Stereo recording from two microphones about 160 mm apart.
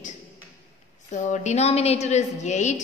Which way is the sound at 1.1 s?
50° left (ahead or behind).